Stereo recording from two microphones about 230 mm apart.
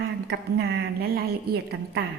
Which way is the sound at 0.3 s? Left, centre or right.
Right.